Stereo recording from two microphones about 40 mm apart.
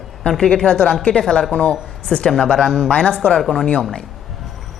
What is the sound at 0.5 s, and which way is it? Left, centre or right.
Speech, left.